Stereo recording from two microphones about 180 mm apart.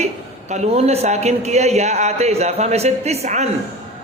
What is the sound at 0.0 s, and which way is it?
A woman's voice, 40° right (ahead or behind).